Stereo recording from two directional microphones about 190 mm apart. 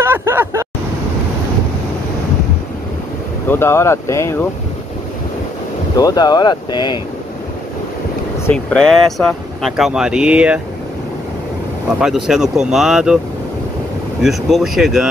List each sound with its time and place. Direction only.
0.0 s vehicle: 15° right (ahead or behind)
3.4 s speech: 10° left (ahead or behind)
5.9 s speech: 20° left (ahead or behind)
8.5 s speech: 5° left (ahead or behind)
12.0 s speech: centre (ahead or behind)
14.2 s speech: centre (ahead or behind)